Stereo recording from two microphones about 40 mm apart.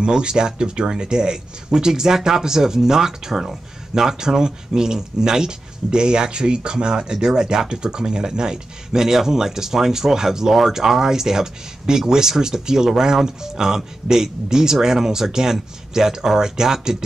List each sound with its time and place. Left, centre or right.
0.0 s speech: right